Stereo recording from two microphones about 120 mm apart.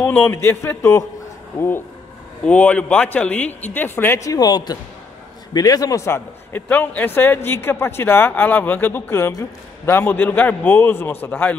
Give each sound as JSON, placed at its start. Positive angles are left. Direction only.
{"t": 0.0, "sound": "a man's voice", "side_deg": 15}
{"t": 2.4, "sound": "a man's voice", "side_deg": 10}